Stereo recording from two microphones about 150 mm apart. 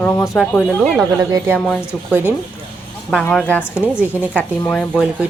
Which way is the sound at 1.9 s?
15° right (ahead or behind).